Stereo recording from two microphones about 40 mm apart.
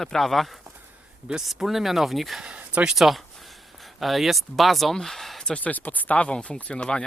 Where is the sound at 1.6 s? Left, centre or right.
Centre.